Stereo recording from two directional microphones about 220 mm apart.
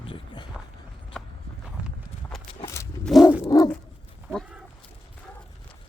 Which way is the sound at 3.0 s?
Centre (ahead or behind).